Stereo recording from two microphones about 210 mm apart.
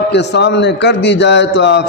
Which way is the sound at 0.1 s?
55° left (ahead or behind).